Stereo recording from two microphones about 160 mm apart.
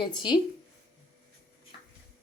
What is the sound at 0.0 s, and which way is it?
Speech, 30° left (ahead or behind).